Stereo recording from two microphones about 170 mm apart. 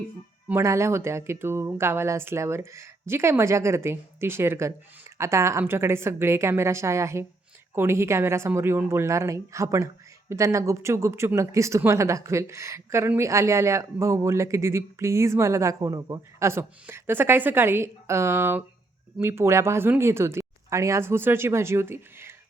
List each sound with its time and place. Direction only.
0.4 s speech: 15° right (ahead or behind)